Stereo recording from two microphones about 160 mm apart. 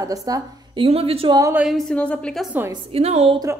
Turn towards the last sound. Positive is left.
turn(degrees=-40)  # may be behind; listen again after turning